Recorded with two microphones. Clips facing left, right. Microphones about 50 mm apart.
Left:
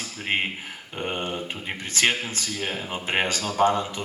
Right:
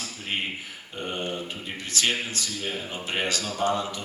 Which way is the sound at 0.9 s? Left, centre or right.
Left.